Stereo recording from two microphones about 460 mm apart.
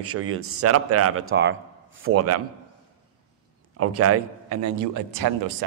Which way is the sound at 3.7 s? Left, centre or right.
Right.